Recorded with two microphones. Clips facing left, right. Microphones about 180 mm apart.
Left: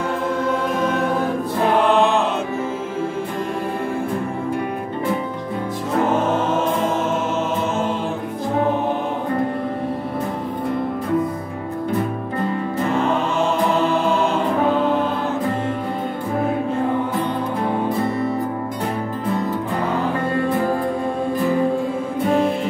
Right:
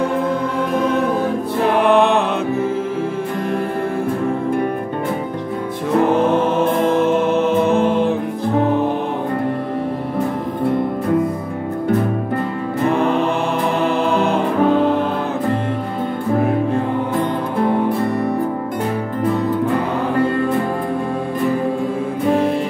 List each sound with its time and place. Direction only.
1.9 s music: 60° right (ahead or behind)
6.3 s music: 60° right (ahead or behind)
12.9 s music: 60° right (ahead or behind)